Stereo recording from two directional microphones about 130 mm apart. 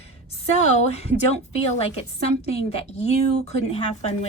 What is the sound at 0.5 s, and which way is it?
A woman's voice, 60° left (ahead or behind).